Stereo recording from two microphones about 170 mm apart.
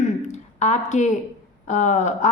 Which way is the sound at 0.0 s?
45° left (ahead or behind).